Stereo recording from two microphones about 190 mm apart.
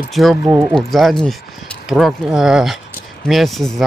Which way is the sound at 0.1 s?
Centre (ahead or behind).